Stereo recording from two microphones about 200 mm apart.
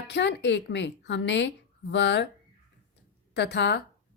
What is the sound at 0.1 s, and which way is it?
Speech, 60° left (ahead or behind).